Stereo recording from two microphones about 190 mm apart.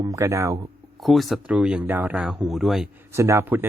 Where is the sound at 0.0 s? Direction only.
15° right (ahead or behind).